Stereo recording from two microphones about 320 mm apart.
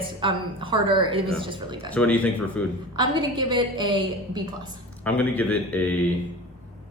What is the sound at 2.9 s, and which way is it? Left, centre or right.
A woman's voice, centre.